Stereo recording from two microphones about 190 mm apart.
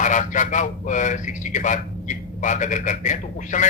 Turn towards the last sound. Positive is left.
turn(degrees=40)  # may be behind; listen again after turning